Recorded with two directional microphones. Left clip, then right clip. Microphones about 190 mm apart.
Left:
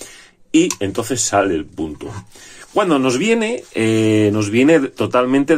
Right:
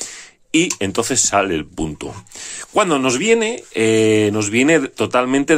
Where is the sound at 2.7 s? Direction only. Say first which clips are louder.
Even; 30° right (ahead or behind).